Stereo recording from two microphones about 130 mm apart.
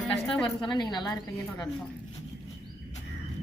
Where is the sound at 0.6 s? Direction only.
35° left (ahead or behind).